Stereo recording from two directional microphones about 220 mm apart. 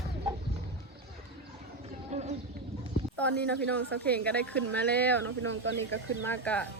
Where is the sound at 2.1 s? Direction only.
30° right (ahead or behind).